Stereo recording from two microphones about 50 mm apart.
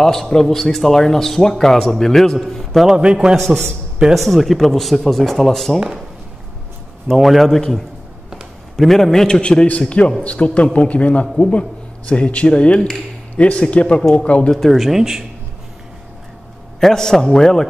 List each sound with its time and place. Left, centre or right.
0.0 s speech: centre
3.4 s speech: centre
4.1 s speech: centre
5.8 s speech: centre
7.1 s speech: centre
9.4 s a man's voice: centre
14.5 s speech: centre
16.8 s speech: centre